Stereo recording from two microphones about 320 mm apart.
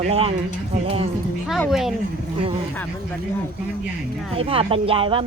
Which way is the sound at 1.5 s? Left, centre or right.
Centre.